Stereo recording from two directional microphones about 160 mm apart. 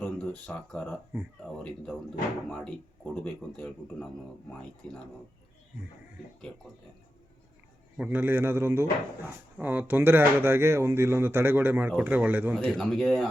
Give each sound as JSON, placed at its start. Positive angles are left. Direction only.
{"t": 0.0, "sound": "a man's voice", "side_deg": 10}
{"t": 7.9, "sound": "speech", "side_deg": -10}
{"t": 12.5, "sound": "a man's voice", "side_deg": 5}